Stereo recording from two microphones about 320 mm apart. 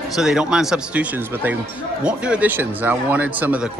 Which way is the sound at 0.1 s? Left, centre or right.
Centre.